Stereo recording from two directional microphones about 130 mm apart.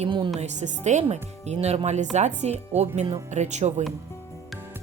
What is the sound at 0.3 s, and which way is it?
Speech, 65° right (ahead or behind).